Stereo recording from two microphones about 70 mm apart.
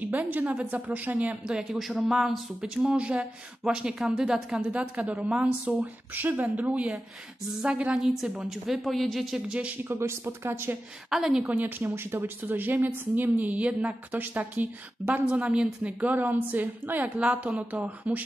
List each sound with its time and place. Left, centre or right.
0.0 s a woman's voice: right
1.6 s a woman's voice: centre; by 6.6 s right
6.6 s a woman's voice: centre
9.5 s speech: centre
9.8 s speech: right
11.1 s a woman's voice: centre
11.4 s a woman's voice: right